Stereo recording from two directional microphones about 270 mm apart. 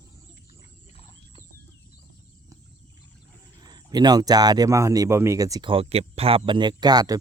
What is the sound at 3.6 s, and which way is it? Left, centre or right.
Speech, centre.